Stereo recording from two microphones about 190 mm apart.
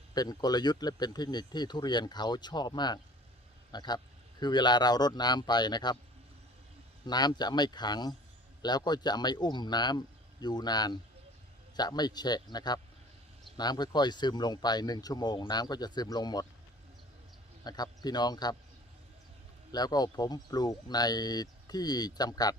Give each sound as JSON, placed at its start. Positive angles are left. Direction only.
{"t": 0.1, "sound": "speech", "side_deg": 20}
{"t": 7.0, "sound": "speech", "side_deg": 20}
{"t": 17.6, "sound": "a man's voice", "side_deg": 20}
{"t": 19.7, "sound": "speech", "side_deg": 20}